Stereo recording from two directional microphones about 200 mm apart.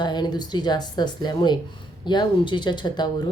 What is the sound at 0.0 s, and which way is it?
Speech, 20° left (ahead or behind).